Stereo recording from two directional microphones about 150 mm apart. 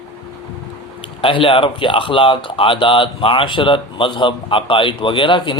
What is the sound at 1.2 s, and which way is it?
Speech, 35° left (ahead or behind).